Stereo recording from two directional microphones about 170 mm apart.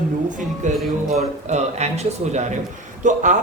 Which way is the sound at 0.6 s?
50° right (ahead or behind).